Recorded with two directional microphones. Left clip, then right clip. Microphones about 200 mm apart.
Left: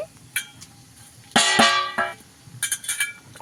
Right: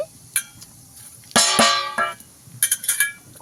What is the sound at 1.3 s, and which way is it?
Music, 30° right (ahead or behind).